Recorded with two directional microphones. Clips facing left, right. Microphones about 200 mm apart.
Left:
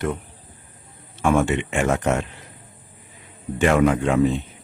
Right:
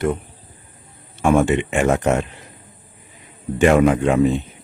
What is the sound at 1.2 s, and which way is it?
Speech, 15° right (ahead or behind).